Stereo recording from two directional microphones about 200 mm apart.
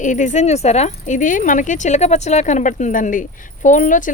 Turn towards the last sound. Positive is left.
turn(degrees=40)  # may be behind; listen again after turning